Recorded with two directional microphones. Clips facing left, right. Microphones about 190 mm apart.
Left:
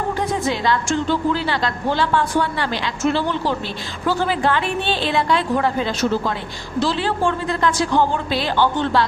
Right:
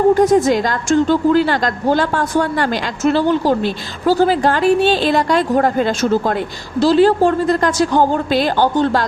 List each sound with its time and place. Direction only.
0.1 s a woman's voice: 45° right (ahead or behind)